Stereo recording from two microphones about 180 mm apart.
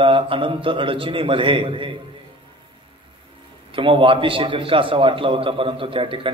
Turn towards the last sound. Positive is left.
turn(degrees=-30)  # may be behind; listen again after turning